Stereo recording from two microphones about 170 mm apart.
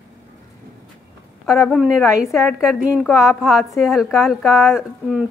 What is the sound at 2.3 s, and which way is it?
A woman's voice, centre (ahead or behind).